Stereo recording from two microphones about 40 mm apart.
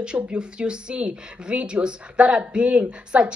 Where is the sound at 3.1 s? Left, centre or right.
Right.